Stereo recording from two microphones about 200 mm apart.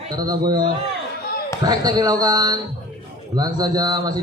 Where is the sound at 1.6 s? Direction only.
20° right (ahead or behind).